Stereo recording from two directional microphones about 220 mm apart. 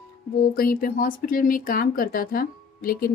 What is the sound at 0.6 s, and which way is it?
A woman's voice, 40° left (ahead or behind).